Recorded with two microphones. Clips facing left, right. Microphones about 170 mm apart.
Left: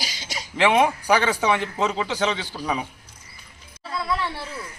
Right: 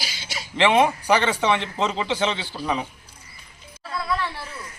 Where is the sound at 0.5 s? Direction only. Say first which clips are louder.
Right 1 dB; 5° left (ahead or behind).